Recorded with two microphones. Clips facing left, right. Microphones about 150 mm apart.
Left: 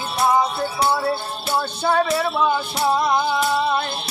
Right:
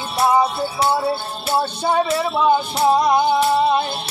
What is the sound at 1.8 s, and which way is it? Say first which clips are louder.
Music: left 2 dB; 15° right (ahead or behind).